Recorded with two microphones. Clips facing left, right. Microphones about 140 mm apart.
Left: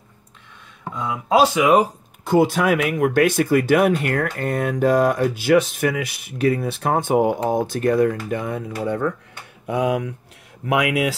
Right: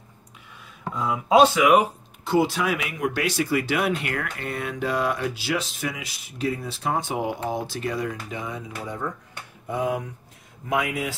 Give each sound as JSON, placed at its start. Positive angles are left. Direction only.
{"t": 0.9, "sound": "speech", "side_deg": 0}
{"t": 1.6, "sound": "speech", "side_deg": 35}
{"t": 2.2, "sound": "speech", "side_deg": 50}
{"t": 9.7, "sound": "speech", "side_deg": 75}